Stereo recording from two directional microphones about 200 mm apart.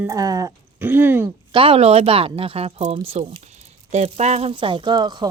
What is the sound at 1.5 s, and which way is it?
Speech, 25° right (ahead or behind).